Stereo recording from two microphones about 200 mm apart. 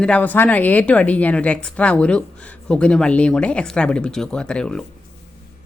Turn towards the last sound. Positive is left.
turn(degrees=5)  # may be behind; listen again after turning